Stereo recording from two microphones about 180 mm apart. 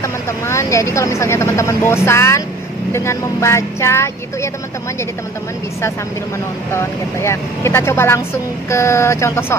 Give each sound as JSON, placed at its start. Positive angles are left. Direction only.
{"t": 0.0, "sound": "speech", "side_deg": 15}
{"t": 6.7, "sound": "speech", "side_deg": 15}